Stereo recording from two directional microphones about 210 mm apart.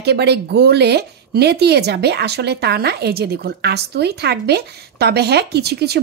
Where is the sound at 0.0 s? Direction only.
50° right (ahead or behind).